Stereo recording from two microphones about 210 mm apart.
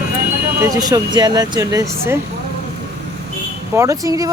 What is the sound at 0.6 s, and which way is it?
Speech, 15° right (ahead or behind).